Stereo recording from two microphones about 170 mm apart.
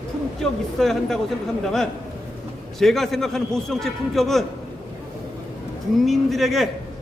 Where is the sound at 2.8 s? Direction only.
Centre (ahead or behind).